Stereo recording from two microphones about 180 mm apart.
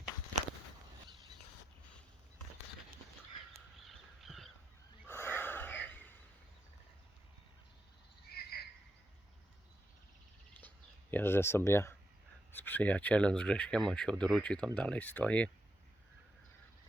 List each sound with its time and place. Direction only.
3.8 s crow: centre (ahead or behind)
5.0 s snort: 15° left (ahead or behind)
8.3 s bird: 60° left (ahead or behind)
11.1 s speech: 10° left (ahead or behind)